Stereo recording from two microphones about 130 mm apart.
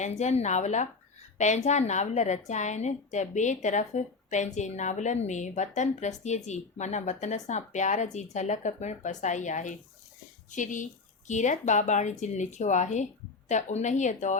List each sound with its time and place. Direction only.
0.0 s a woman's voice: 60° left (ahead or behind)